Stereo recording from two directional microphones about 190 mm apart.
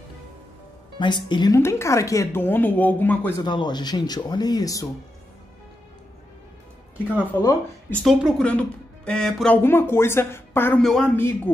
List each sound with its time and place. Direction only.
0.9 s speech: 25° left (ahead or behind)
3.4 s speech: 25° left (ahead or behind)
7.9 s speech: centre (ahead or behind)
10.8 s speech: centre (ahead or behind)
11.1 s speech: 10° left (ahead or behind)